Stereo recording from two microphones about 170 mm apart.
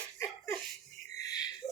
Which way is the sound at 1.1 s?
20° left (ahead or behind).